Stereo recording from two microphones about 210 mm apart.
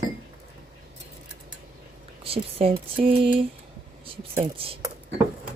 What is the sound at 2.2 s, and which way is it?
Speech, 25° right (ahead or behind).